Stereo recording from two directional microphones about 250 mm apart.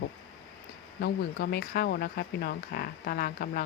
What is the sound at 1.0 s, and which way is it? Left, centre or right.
Speech, left.